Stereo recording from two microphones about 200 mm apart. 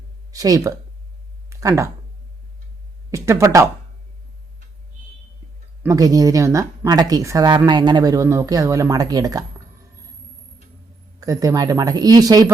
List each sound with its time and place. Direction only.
0.3 s speech: 15° right (ahead or behind)
1.5 s a sound: 15° right (ahead or behind)
3.1 s speech: 15° right (ahead or behind)
5.8 s speech: 15° right (ahead or behind)
11.2 s speech: 15° right (ahead or behind)